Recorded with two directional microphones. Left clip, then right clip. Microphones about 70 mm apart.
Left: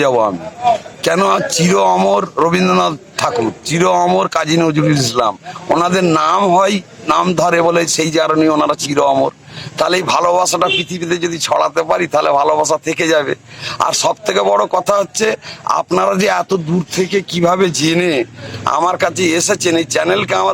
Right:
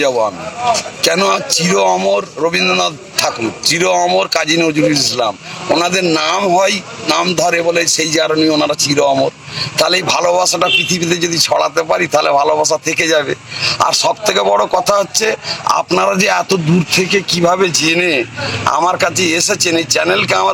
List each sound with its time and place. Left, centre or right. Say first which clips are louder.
0.6 s a man's voice: even; left